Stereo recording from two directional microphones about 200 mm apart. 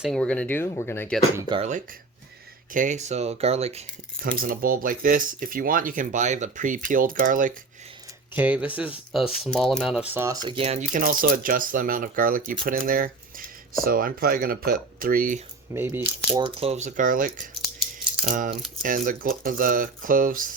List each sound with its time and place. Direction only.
0.0 s speech: 5° left (ahead or behind)
1.4 s speech: 20° right (ahead or behind)
2.7 s speech: 40° right (ahead or behind)
4.4 s speech: 45° right (ahead or behind)
8.4 s speech: 5° right (ahead or behind)
10.4 s speech: 25° right (ahead or behind); by 15.4 s 45° right (ahead or behind)
15.7 s speech: 10° right (ahead or behind)
16.3 s speech: 25° right (ahead or behind); by 17.5 s 40° right (ahead or behind)
18.8 s speech: 40° right (ahead or behind)